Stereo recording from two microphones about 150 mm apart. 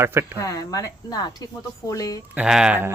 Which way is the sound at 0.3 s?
25° left (ahead or behind).